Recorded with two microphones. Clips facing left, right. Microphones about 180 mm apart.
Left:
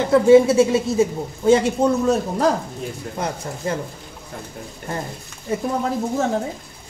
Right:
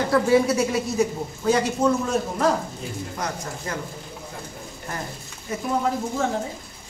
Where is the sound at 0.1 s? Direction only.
25° left (ahead or behind).